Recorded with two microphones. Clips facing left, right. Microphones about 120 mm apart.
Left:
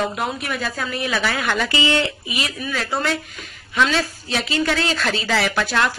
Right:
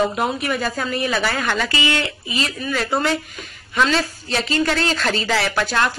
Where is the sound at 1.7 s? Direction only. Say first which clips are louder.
Left 2 dB; 20° left (ahead or behind).